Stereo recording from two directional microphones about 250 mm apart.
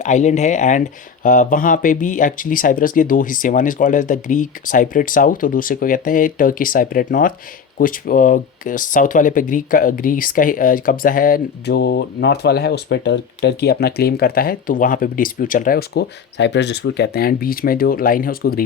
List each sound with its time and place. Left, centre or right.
0.0 s speech: left